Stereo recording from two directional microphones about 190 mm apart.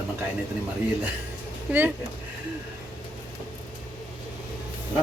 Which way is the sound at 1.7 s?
10° right (ahead or behind).